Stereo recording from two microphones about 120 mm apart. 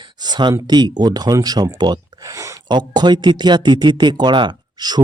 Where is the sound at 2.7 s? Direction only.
35° right (ahead or behind).